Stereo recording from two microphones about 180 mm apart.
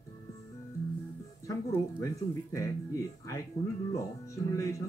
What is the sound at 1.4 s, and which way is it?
Speech, 15° left (ahead or behind).